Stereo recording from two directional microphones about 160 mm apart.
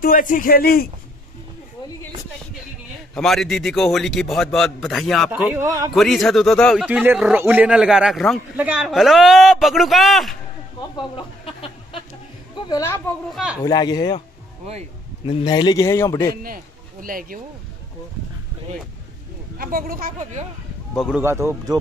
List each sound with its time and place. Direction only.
0.0 s a man's voice: 60° left (ahead or behind)
3.2 s a man's voice: centre (ahead or behind)
6.9 s a man's voice: 10° right (ahead or behind)
11.0 s a sound: 35° left (ahead or behind)
12.6 s a man's voice: 20° left (ahead or behind)
13.3 s a man's voice: 5° right (ahead or behind)
13.7 s a man's voice: 25° left (ahead or behind)
15.2 s a man's voice: 30° left (ahead or behind)
16.4 s speech: 65° right (ahead or behind)
19.6 s speech: 65° right (ahead or behind)
20.9 s speech: centre (ahead or behind)
21.2 s speech: 15° right (ahead or behind)